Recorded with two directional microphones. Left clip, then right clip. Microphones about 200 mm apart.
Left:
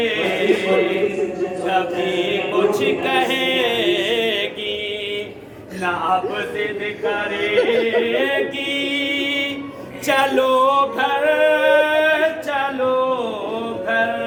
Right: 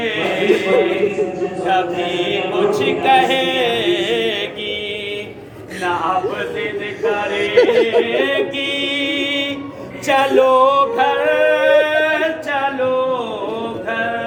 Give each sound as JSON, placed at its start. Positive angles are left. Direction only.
{"t": 0.0, "sound": "a sound", "side_deg": 15}
{"t": 1.6, "sound": "a capella", "side_deg": 15}
{"t": 7.3, "sound": "speech", "side_deg": -15}
{"t": 8.7, "sound": "music", "side_deg": 20}
{"t": 10.1, "sound": "singing", "side_deg": 20}